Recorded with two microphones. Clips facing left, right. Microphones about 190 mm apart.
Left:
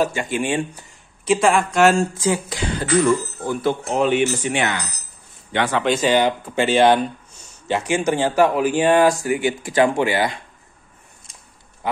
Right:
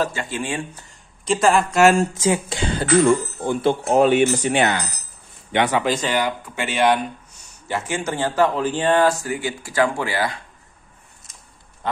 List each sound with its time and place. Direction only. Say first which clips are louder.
0.0 s speech: left 3 dB; 15° left (ahead or behind)
1.2 s speech: left 1 dB; centre (ahead or behind)
2.1 s speech: right 1 dB; 20° right (ahead or behind)
3.8 s speech: right 4 dB; 40° right (ahead or behind)
5.5 s a man's voice: right 1 dB; 15° right (ahead or behind)
5.9 s speech: left 5 dB; 20° left (ahead or behind)
11.8 s speech: left 1 dB; 10° left (ahead or behind)